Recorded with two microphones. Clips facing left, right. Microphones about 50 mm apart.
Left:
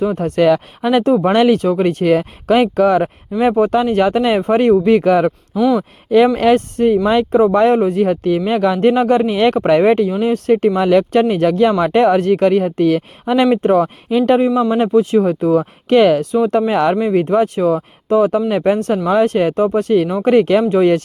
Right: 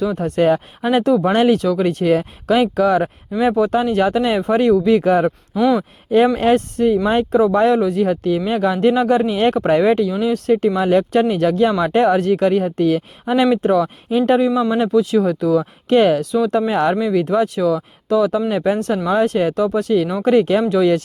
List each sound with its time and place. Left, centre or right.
0.0 s speech: left
1.0 s speech: left
1.3 s speech: left
5.5 s speech: centre
6.1 s speech: left
13.6 s speech: left
14.7 s speech: left
17.0 s speech: left